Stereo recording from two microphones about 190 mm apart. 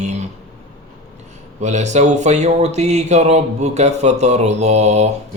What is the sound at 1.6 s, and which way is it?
Speech, 40° right (ahead or behind).